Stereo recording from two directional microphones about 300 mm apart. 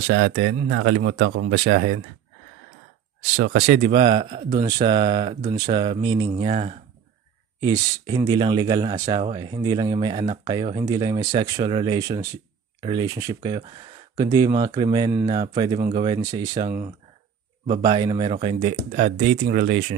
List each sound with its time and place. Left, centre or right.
0.0 s speech: right
3.3 s speech: right
3.6 s speech: right